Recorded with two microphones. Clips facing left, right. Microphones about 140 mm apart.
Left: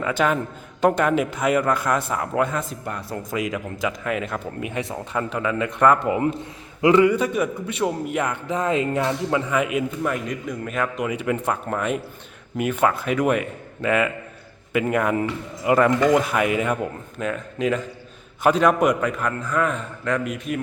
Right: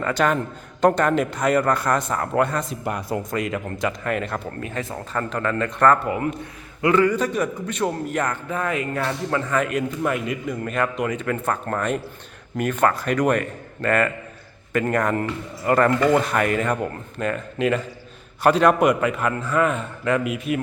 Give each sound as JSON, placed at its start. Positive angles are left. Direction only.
{"t": 0.0, "sound": "a man's voice", "side_deg": 5}
{"t": 2.8, "sound": "speech", "side_deg": -20}
{"t": 3.2, "sound": "a man's voice", "side_deg": 0}
{"t": 6.0, "sound": "a man's voice", "side_deg": 20}
{"t": 10.0, "sound": "a man's voice", "side_deg": -5}